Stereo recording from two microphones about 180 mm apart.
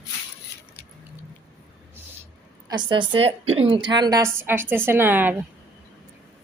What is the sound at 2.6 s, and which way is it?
A woman's voice, 25° right (ahead or behind).